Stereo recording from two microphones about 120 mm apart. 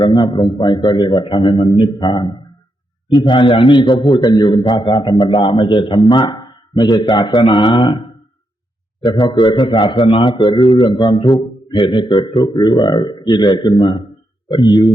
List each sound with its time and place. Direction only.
0.0 s a man's voice: 40° left (ahead or behind)